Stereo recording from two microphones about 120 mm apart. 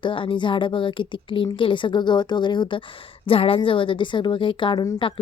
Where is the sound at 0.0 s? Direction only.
45° left (ahead or behind).